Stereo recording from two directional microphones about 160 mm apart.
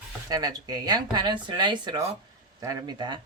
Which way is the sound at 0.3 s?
25° right (ahead or behind).